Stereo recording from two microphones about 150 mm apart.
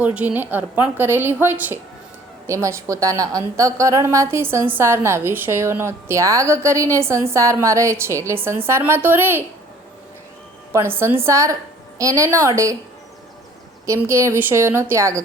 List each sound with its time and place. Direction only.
0.0 s a woman's voice: 10° right (ahead or behind)
10.7 s a woman's voice: 15° right (ahead or behind)
13.8 s a woman's voice: 20° right (ahead or behind)